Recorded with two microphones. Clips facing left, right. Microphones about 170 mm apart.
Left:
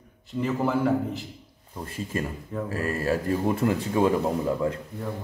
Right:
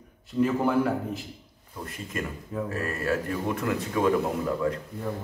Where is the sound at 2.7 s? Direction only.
30° left (ahead or behind).